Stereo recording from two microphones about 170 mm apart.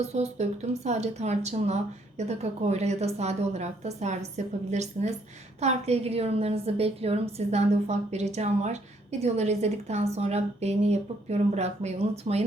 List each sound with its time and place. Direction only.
0.1 s a woman's voice: 40° right (ahead or behind)